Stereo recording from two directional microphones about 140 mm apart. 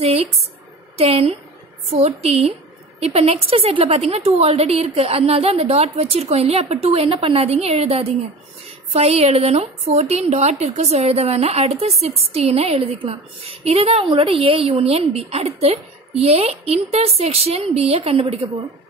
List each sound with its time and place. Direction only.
0.0 s a woman's voice: 45° right (ahead or behind)